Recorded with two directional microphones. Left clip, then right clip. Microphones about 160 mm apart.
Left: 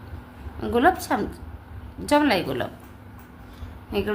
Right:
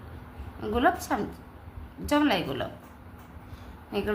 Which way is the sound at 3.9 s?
10° left (ahead or behind).